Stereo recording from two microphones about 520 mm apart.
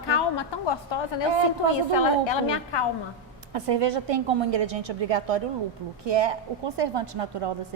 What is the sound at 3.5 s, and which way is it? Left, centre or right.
A woman's voice, right.